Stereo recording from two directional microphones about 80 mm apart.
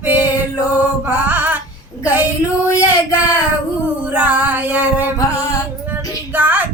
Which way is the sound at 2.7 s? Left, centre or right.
Right.